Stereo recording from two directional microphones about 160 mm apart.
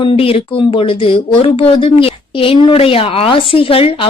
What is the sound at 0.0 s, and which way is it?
Speech, 35° left (ahead or behind).